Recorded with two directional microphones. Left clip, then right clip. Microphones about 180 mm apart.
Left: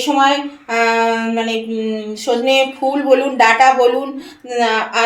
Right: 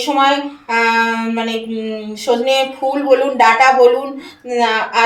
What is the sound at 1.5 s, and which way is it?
Speech, 25° left (ahead or behind).